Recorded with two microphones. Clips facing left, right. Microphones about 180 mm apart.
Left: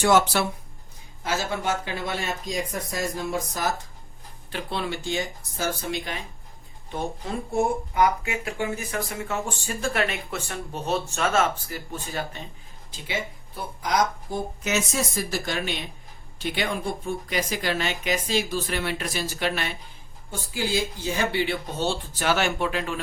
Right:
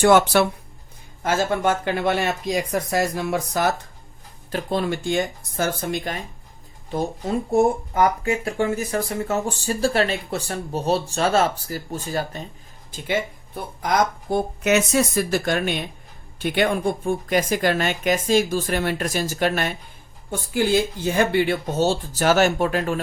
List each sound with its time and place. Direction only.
0.0 s speech: 55° right (ahead or behind)
4.5 s a woman's voice: 45° right (ahead or behind)
6.9 s speech: 40° right (ahead or behind)
12.9 s a woman's voice: 50° right (ahead or behind)
20.5 s a woman's voice: 60° right (ahead or behind)